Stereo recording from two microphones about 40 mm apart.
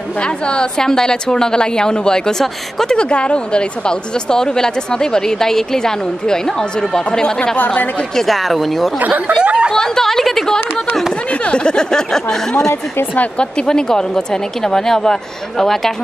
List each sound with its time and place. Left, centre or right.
0.5 s speech: centre
7.5 s speech: left
8.2 s speech: centre
9.3 s speech: right
9.7 s speech: centre
11.4 s speech: left